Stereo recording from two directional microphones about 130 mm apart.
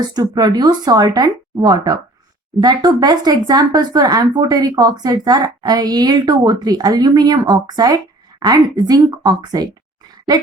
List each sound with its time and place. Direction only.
0.1 s speech: 30° right (ahead or behind)